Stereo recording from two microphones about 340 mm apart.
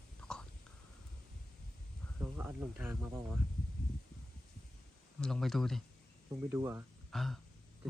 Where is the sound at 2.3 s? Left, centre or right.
Centre.